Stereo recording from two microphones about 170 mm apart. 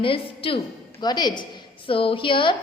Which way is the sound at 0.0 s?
30° left (ahead or behind).